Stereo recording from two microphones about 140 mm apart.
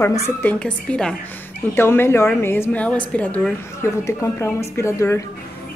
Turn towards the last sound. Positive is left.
turn(degrees=20)  # may be behind; listen again after turning